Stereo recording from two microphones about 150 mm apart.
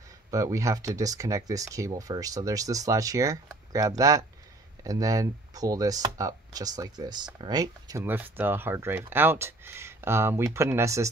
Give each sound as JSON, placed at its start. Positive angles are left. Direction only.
{"t": 0.3, "sound": "speech", "side_deg": -20}